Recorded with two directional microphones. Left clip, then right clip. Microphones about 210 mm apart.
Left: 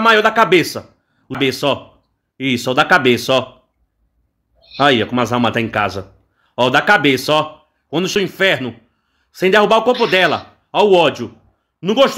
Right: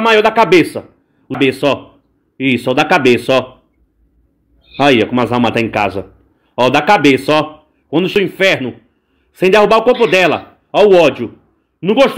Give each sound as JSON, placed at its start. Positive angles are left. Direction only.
{"t": 0.0, "sound": "a man's voice", "side_deg": 15}
{"t": 4.7, "sound": "a man's voice", "side_deg": 15}